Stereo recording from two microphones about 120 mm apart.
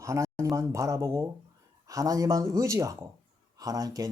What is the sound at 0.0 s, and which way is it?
Speech, 25° right (ahead or behind).